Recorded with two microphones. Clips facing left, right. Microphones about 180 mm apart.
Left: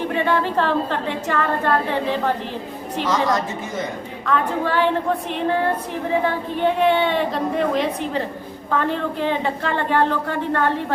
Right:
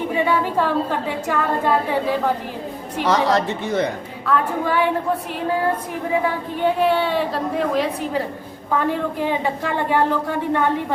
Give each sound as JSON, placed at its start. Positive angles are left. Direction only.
{"t": 0.1, "sound": "a woman's voice", "side_deg": -10}
{"t": 3.1, "sound": "speech", "side_deg": -70}
{"t": 4.3, "sound": "a woman's voice", "side_deg": -10}
{"t": 6.6, "sound": "a woman's voice", "side_deg": -5}